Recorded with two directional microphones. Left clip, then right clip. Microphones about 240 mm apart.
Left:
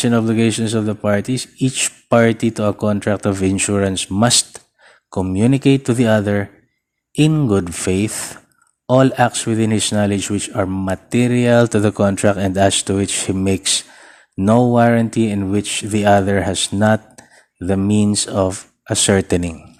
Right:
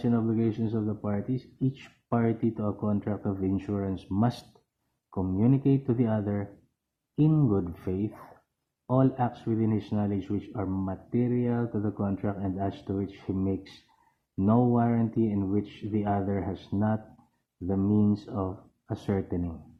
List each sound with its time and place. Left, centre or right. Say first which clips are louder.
0.0 s speech: left 12 dB; left
14.3 s speech: left 12 dB; left